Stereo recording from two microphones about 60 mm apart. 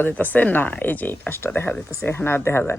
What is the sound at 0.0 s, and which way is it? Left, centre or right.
Speech, left.